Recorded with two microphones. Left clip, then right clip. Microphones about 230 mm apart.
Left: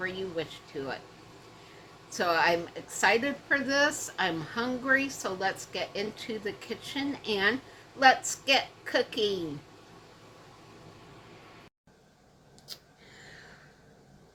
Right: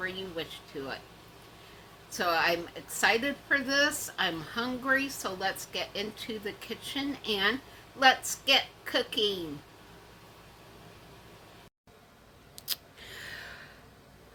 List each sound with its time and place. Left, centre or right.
0.0 s a woman's voice: centre
2.0 s a woman's voice: centre
12.6 s a sound: right